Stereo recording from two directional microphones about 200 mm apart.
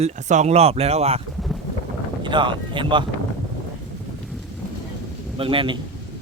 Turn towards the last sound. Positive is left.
turn(degrees=-25)  # may be behind; listen again after turning